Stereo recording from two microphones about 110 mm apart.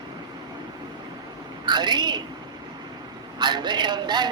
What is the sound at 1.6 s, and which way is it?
Speech, 40° right (ahead or behind).